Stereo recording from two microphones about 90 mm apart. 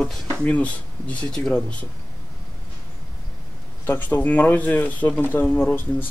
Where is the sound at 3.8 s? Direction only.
20° left (ahead or behind).